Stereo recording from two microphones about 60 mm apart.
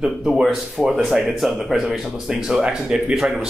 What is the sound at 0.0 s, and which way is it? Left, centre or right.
Speech, centre.